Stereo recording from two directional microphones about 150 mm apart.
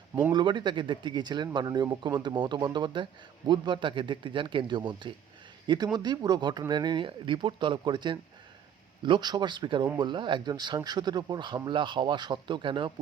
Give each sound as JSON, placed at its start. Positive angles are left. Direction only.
{"t": 0.3, "sound": "speech", "side_deg": -30}